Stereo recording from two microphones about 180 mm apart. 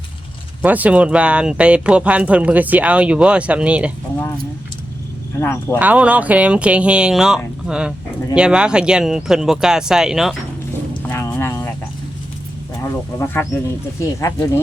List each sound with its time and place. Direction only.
0.6 s speech: 10° right (ahead or behind)
5.4 s speech: 15° left (ahead or behind)
5.8 s speech: 10° right (ahead or behind)
11.1 s music: 15° left (ahead or behind)
13.1 s speech: 10° left (ahead or behind)